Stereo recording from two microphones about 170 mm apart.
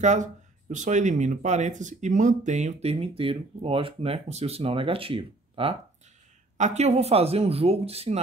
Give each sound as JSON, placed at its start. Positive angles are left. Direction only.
{"t": 0.0, "sound": "speech", "side_deg": -45}